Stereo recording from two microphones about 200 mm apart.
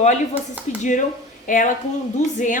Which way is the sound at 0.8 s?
40° left (ahead or behind).